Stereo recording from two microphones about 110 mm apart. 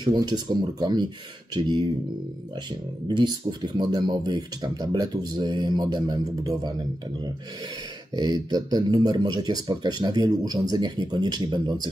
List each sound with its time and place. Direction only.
0.0 s speech: 40° right (ahead or behind)
3.2 s speech: 45° right (ahead or behind)
8.1 s speech: 40° right (ahead or behind)